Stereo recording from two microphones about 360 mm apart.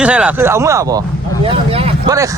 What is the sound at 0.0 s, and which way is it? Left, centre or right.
Speech, centre.